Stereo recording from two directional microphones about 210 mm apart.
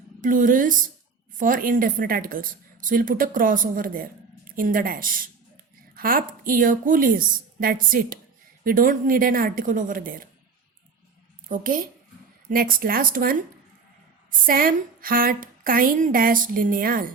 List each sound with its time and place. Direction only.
0.2 s a woman's voice: 40° right (ahead or behind)
11.4 s a woman's voice: 40° right (ahead or behind)